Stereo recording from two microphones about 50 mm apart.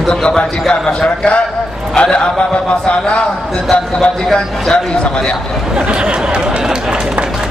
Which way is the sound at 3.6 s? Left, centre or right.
Centre.